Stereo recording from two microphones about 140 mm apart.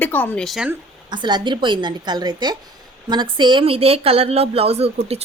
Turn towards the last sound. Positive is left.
turn(degrees=-45)  # may be behind; listen again after turning